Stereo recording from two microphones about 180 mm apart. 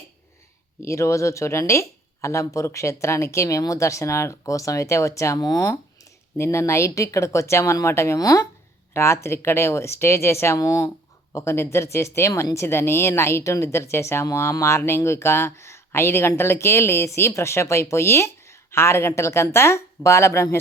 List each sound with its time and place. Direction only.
0.8 s speech: 15° left (ahead or behind)